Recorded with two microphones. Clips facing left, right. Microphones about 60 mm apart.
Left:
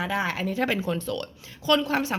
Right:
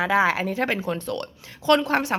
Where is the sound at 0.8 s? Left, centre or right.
Right.